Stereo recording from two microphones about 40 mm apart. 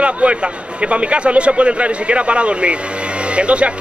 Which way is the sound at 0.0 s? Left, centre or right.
Right.